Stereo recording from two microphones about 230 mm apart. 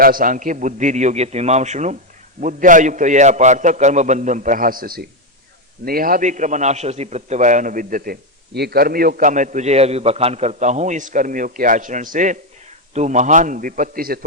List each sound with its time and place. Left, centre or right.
0.0 s a man's voice: right